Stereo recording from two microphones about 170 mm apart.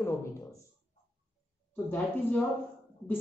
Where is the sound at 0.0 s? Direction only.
15° left (ahead or behind).